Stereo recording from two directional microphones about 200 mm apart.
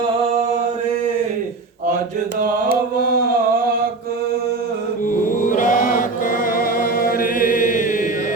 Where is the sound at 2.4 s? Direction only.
50° right (ahead or behind).